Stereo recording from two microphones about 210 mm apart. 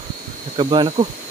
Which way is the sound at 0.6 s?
20° right (ahead or behind).